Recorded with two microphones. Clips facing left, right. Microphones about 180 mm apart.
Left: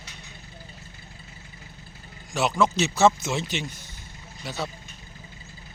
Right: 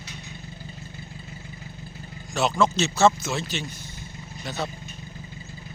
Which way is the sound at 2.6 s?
15° left (ahead or behind).